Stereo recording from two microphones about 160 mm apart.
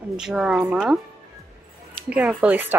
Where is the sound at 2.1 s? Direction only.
10° right (ahead or behind).